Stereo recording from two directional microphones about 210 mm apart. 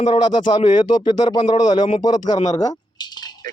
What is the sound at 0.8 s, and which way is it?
A man's voice, 20° left (ahead or behind).